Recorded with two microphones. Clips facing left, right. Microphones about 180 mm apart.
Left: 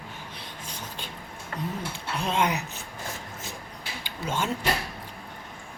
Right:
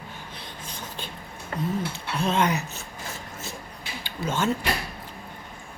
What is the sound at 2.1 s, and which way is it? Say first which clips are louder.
Speech: right 2 dB; 10° left (ahead or behind).